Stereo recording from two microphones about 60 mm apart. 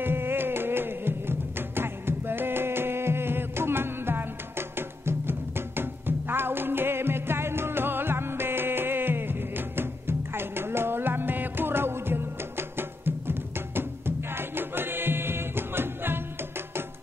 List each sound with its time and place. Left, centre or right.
0.0 s music: right